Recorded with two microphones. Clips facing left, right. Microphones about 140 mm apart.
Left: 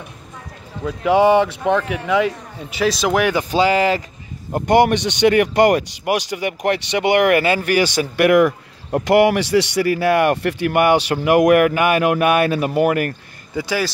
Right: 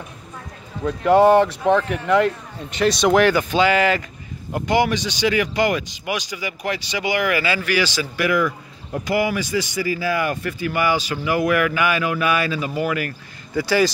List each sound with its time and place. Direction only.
0.8 s speech: centre (ahead or behind)
3.4 s speech: 35° left (ahead or behind)
4.6 s speech: 60° left (ahead or behind)